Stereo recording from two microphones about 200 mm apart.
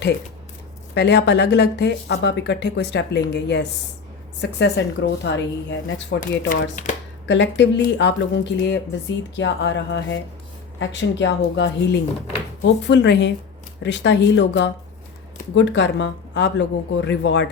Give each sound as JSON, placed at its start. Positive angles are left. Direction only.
{"t": 0.9, "sound": "speech", "side_deg": 60}
{"t": 6.5, "sound": "speech", "side_deg": 40}
{"t": 7.3, "sound": "speech", "side_deg": 60}